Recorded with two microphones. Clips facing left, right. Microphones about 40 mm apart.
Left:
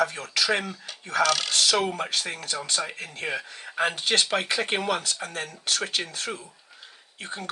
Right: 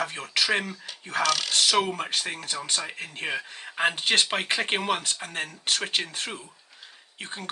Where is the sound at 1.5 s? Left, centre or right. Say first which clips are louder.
Even; right.